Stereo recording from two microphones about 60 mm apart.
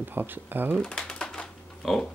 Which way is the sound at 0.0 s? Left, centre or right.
Right.